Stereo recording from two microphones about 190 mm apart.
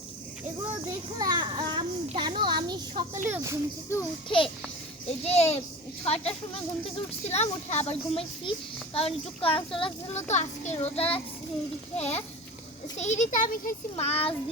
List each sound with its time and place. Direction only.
1.2 s a child's voice: 25° right (ahead or behind)
5.0 s a child's voice: 35° left (ahead or behind)
6.8 s a child's voice: 30° left (ahead or behind)